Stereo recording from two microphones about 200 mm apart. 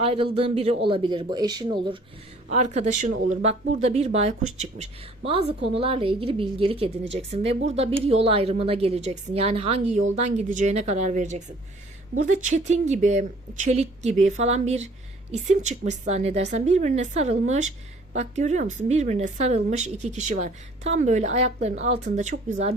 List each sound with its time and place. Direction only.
0.0 s a man's voice: 30° right (ahead or behind)
2.5 s speech: 35° right (ahead or behind)